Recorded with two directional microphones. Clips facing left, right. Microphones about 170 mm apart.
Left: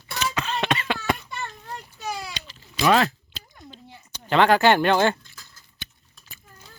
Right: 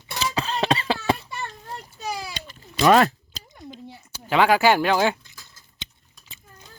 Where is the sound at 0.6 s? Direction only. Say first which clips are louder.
Right 4 dB; 35° right (ahead or behind).